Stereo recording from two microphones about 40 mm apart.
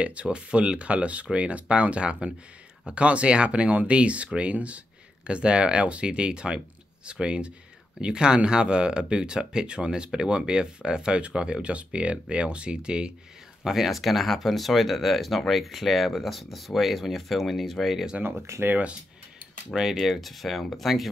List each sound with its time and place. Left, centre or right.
0.0 s speech: right
13.7 s speech: centre
18.2 s speech: right
19.7 s speech: centre
20.0 s speech: centre